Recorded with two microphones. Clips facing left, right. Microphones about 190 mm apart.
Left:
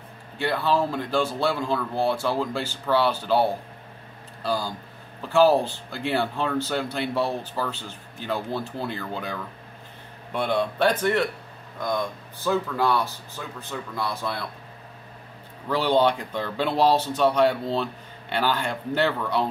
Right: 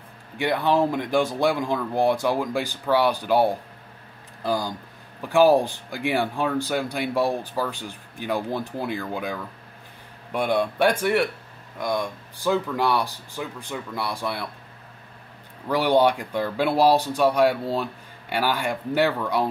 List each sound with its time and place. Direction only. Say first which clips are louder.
0.4 s speech: right 2 dB; 20° right (ahead or behind)
15.7 s speech: right 2 dB; 15° right (ahead or behind)